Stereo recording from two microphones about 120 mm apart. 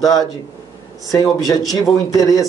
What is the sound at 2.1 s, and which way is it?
Speech, 30° left (ahead or behind).